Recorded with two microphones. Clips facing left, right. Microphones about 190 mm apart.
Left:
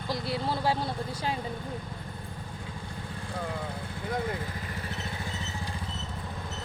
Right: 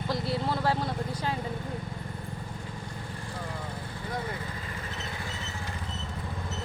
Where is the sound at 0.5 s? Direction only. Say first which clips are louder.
Left 1 dB; 5° left (ahead or behind).